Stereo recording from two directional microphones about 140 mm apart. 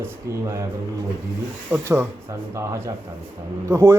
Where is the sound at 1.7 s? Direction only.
20° right (ahead or behind).